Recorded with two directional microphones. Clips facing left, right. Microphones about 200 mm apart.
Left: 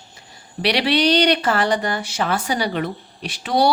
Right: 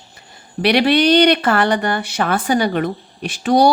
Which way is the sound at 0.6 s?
50° right (ahead or behind).